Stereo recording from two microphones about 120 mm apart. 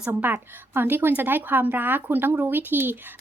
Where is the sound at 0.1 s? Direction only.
15° right (ahead or behind).